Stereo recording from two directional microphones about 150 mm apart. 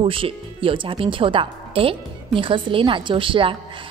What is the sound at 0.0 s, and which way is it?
Speech, 35° right (ahead or behind).